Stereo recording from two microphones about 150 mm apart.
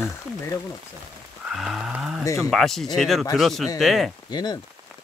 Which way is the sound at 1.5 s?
Centre (ahead or behind).